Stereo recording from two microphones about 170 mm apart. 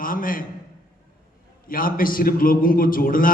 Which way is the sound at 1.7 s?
55° left (ahead or behind).